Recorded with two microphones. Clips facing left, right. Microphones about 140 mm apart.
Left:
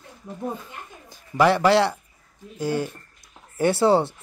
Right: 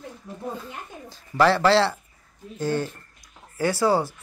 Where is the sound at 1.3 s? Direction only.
15° left (ahead or behind).